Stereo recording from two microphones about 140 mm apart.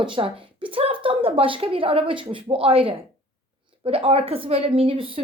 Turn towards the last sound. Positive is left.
turn(degrees=-40)  # may be behind; listen again after turning